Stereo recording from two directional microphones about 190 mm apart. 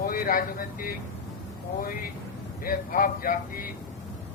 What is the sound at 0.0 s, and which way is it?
Speech, 50° left (ahead or behind).